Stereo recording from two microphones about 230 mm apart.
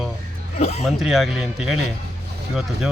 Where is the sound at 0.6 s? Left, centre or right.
Left.